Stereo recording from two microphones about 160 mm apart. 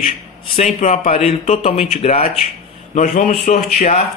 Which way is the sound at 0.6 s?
45° left (ahead or behind).